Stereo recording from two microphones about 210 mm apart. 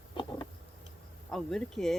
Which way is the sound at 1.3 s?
Centre (ahead or behind).